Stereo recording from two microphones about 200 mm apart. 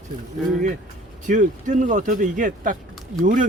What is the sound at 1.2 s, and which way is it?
Speech, 40° right (ahead or behind).